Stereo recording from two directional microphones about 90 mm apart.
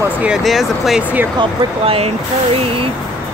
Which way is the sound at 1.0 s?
20° right (ahead or behind).